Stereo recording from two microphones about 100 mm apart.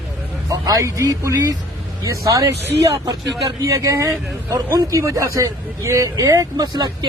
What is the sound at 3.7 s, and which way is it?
A man's voice, 35° right (ahead or behind).